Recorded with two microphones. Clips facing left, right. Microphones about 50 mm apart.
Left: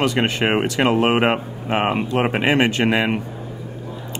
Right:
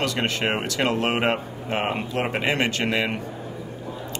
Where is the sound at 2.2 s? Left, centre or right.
Left.